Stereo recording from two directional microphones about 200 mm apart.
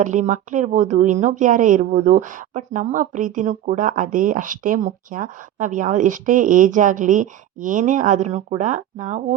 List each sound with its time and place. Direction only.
0.0 s speech: 40° right (ahead or behind)